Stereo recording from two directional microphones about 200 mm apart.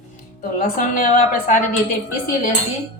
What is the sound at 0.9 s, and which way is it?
Speech, 45° left (ahead or behind).